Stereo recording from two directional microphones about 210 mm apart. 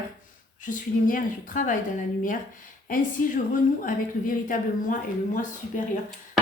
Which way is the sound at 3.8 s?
40° left (ahead or behind).